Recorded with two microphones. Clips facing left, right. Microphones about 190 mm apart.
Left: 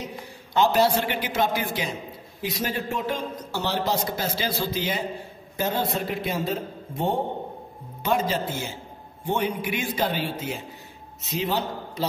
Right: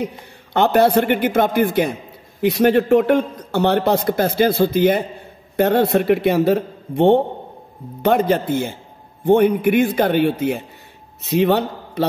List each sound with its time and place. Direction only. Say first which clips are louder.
0.0 s a man's voice: right 9 dB; 60° right (ahead or behind)
8.0 s a man's voice: right 8 dB; 60° right (ahead or behind)